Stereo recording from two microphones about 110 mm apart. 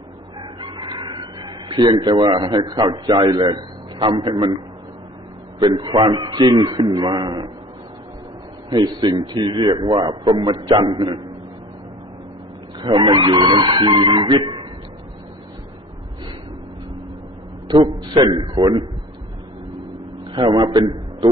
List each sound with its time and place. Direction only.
0.4 s chicken: 40° right (ahead or behind)
4.1 s a man's voice: 45° right (ahead or behind)
5.7 s a man's voice: 45° right (ahead or behind)
8.6 s a man's voice: 45° right (ahead or behind)
12.8 s a man's voice: 45° right (ahead or behind)
17.8 s a man's voice: 40° right (ahead or behind)
20.3 s a man's voice: 45° right (ahead or behind)